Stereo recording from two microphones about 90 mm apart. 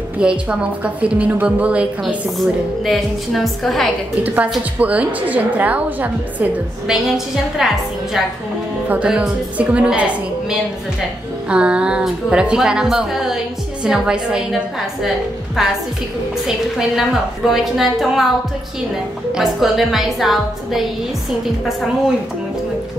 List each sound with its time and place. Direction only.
0.2 s a woman's voice: 10° right (ahead or behind)
2.3 s a woman's voice: centre (ahead or behind)
4.2 s a woman's voice: 15° right (ahead or behind)
6.9 s a woman's voice: 5° right (ahead or behind)
8.8 s a woman's voice: 15° right (ahead or behind)
11.4 s a woman's voice: 10° right (ahead or behind)
16.4 s a woman's voice: 5° right (ahead or behind)
19.3 s a woman's voice: 5° right (ahead or behind)